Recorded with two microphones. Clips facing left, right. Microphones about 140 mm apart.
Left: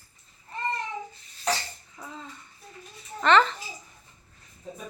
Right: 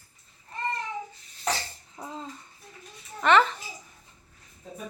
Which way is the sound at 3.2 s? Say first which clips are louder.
Even; 10° right (ahead or behind).